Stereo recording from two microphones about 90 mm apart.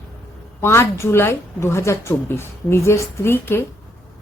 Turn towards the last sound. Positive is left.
turn(degrees=25)  # may be behind; listen again after turning